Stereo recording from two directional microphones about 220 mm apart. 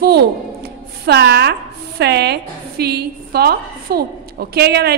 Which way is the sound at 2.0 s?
50° right (ahead or behind).